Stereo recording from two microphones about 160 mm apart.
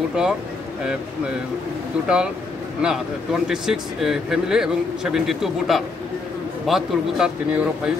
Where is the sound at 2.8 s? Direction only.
5° right (ahead or behind).